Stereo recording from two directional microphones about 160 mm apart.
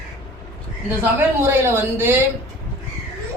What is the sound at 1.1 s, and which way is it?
Speech, 15° right (ahead or behind).